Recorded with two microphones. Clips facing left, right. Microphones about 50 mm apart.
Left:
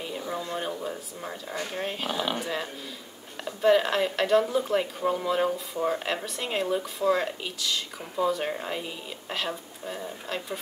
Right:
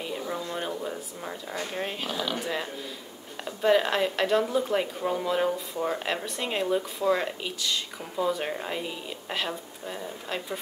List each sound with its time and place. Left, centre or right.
0.0 s a sound: centre
1.8 s speech: centre
2.0 s speech: centre
2.3 s speech: centre